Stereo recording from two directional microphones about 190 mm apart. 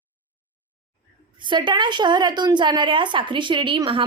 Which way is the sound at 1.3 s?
25° right (ahead or behind).